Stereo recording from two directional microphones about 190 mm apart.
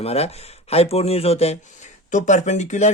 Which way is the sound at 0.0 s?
35° left (ahead or behind).